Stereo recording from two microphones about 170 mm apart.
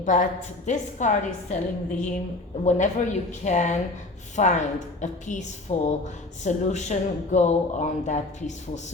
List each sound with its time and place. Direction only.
0.0 s speech: 45° left (ahead or behind)